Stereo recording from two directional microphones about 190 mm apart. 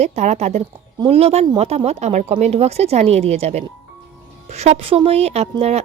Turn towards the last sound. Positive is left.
turn(degrees=-35)  # may be behind; listen again after turning